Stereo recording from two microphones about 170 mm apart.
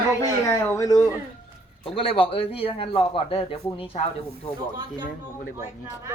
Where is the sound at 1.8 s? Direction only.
35° left (ahead or behind).